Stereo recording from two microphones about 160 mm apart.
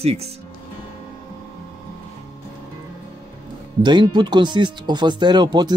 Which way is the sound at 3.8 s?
30° right (ahead or behind).